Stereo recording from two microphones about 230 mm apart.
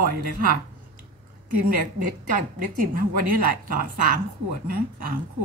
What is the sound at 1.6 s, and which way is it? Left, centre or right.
A woman's voice, right.